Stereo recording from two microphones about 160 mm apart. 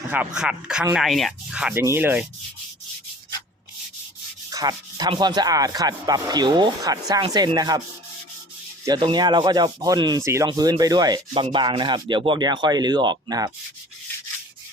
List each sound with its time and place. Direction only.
0.3 s speech: 5° right (ahead or behind)
1.8 s sanding: 15° right (ahead or behind)
4.4 s speech: 25° right (ahead or behind)
8.9 s speech: 30° right (ahead or behind)